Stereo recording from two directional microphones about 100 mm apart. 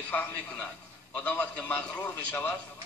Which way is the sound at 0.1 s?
15° left (ahead or behind).